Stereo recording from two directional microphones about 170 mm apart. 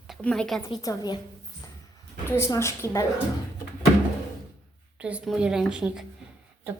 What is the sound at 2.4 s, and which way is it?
Speech, 15° left (ahead or behind).